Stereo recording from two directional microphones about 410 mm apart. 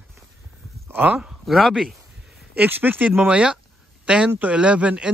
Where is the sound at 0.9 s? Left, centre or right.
Centre.